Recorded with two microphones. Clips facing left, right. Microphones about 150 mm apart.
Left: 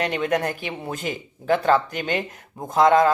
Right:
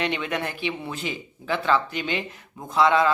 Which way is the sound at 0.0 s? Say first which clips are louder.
Left 4 dB; 45° left (ahead or behind).